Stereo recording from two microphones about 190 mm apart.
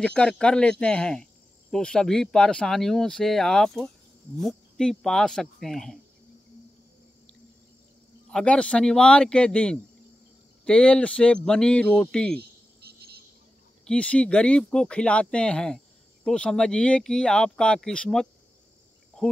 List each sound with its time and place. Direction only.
0.0 s speech: 5° left (ahead or behind)
8.3 s speech: 5° left (ahead or behind)
12.4 s cricket: 55° right (ahead or behind)
13.8 s speech: 5° left (ahead or behind)